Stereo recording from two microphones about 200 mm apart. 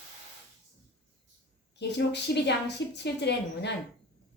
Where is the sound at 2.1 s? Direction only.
55° left (ahead or behind).